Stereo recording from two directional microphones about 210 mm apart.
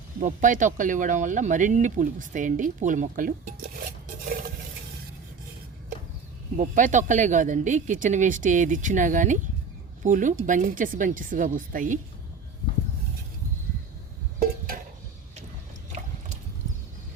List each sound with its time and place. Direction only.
0.2 s speech: 35° right (ahead or behind)
6.6 s speech: 35° right (ahead or behind)